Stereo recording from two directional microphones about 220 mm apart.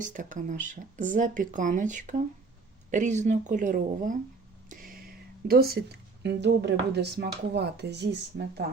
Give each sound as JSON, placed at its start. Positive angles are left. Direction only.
{"t": 0.0, "sound": "speech", "side_deg": -35}